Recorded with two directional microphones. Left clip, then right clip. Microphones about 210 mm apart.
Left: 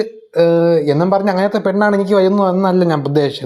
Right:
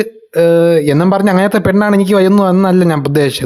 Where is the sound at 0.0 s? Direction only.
30° right (ahead or behind).